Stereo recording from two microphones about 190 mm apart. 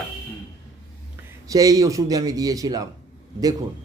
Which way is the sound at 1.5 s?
20° right (ahead or behind).